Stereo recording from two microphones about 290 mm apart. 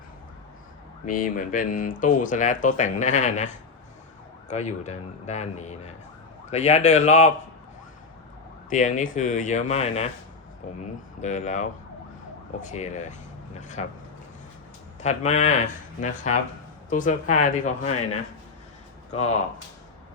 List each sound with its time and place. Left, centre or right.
1.0 s speech: left
8.7 s speech: left
11.2 s speech: left
15.0 s speech: left